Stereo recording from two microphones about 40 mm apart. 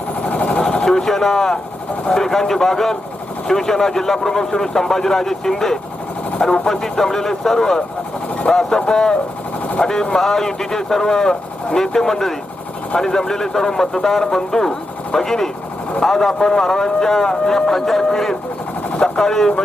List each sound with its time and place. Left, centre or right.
0.2 s vehicle: left
0.6 s vehicle: centre
2.0 s speech: centre